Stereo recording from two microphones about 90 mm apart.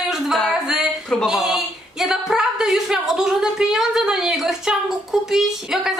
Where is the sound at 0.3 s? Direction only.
Centre (ahead or behind).